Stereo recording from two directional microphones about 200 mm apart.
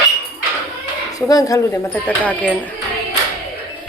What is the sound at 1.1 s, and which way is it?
Speech, 20° left (ahead or behind).